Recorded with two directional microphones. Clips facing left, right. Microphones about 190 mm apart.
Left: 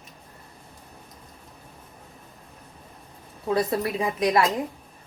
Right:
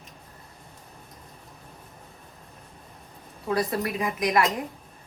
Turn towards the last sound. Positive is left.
turn(degrees=30)  # may be behind; listen again after turning